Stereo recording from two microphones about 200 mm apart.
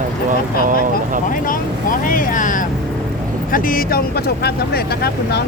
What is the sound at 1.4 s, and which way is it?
Speech, 45° left (ahead or behind).